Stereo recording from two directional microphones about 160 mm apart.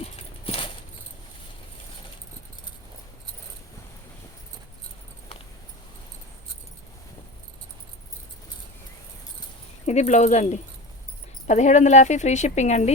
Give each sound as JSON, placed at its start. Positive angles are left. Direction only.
{"t": 0.0, "sound": "clip-clop", "side_deg": 35}
{"t": 9.8, "sound": "speech", "side_deg": 45}